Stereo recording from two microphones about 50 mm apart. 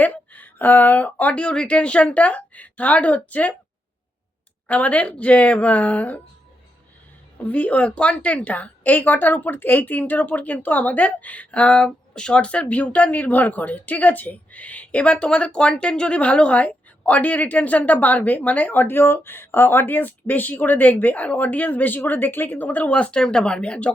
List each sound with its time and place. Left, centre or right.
0.0 s a sound: left
1.5 s a woman's voice: left
4.7 s a woman's voice: left
7.4 s a woman's voice: left
22.9 s a woman's voice: left